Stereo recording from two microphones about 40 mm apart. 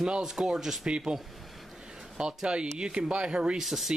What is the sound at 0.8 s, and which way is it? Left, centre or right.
Speech, right.